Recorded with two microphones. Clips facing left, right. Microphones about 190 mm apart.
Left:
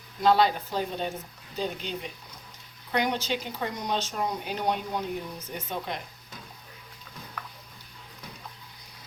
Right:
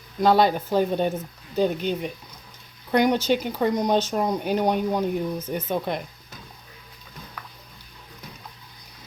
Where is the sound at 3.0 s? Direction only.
45° right (ahead or behind).